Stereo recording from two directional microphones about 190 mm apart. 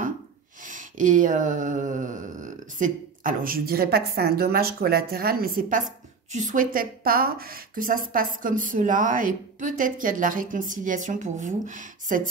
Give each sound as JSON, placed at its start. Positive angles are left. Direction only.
{"t": 0.7, "sound": "speech", "side_deg": -40}